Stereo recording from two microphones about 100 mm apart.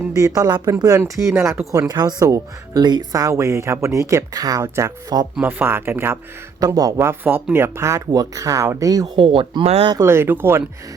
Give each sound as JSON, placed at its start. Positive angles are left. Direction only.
{"t": 0.1, "sound": "speech", "side_deg": -35}
{"t": 1.3, "sound": "speech", "side_deg": -25}
{"t": 1.9, "sound": "speech", "side_deg": -40}
{"t": 5.4, "sound": "speech", "side_deg": -20}
{"t": 6.6, "sound": "speech", "side_deg": -35}
{"t": 9.2, "sound": "speech", "side_deg": -55}
{"t": 10.0, "sound": "speech", "side_deg": -25}